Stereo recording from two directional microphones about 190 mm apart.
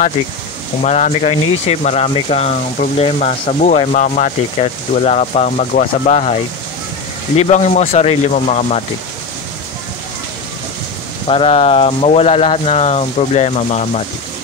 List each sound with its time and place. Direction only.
0.8 s speech: 35° left (ahead or behind)
7.3 s speech: 35° left (ahead or behind)
11.2 s speech: 30° left (ahead or behind)